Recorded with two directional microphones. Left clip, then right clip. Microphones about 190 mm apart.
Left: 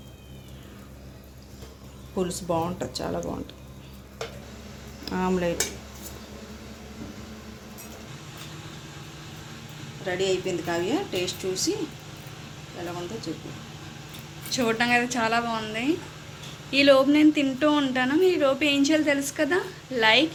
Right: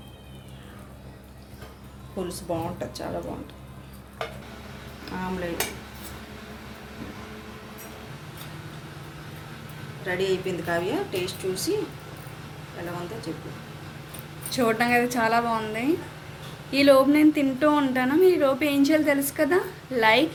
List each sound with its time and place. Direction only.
2.1 s a woman's voice: 45° left (ahead or behind)
5.0 s dishes: 60° left (ahead or behind)
10.2 s a woman's voice: 45° left (ahead or behind)
14.5 s speech: 10° right (ahead or behind)